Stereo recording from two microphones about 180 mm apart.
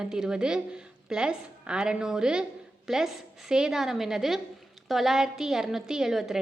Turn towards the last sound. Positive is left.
turn(degrees=0)  # may be behind; listen again after turning